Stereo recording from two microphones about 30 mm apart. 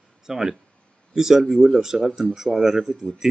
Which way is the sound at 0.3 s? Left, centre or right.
Centre.